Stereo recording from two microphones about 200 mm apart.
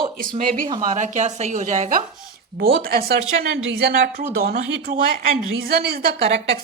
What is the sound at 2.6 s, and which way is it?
Speech, 50° right (ahead or behind).